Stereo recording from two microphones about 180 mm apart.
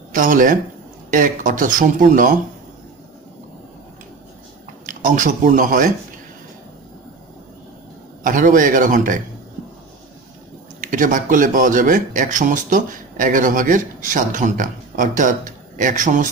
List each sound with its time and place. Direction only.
0.1 s speech: 50° right (ahead or behind)
4.8 s speech: 45° right (ahead or behind)
8.2 s speech: 45° right (ahead or behind)
10.8 s speech: 45° right (ahead or behind)